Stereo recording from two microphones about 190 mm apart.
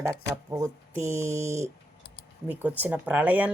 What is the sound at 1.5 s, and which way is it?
Speech, 15° right (ahead or behind).